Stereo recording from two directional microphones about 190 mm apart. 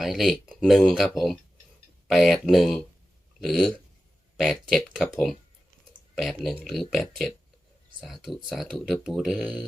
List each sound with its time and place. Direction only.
0.0 s speech: centre (ahead or behind)
6.1 s speech: centre (ahead or behind)